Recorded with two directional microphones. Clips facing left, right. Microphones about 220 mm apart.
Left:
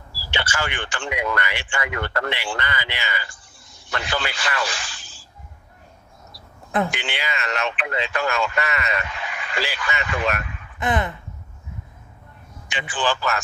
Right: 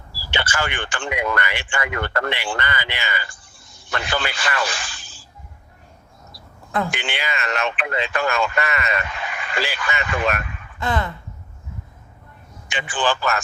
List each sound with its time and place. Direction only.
0.3 s speech: 50° right (ahead or behind)
6.9 s speech: 50° right (ahead or behind)
10.8 s speech: 20° left (ahead or behind)
12.6 s a man's voice: 50° right (ahead or behind)